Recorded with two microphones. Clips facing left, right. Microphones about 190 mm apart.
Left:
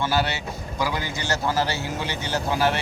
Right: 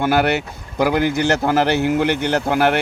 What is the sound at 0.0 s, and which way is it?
A man's voice, 60° right (ahead or behind).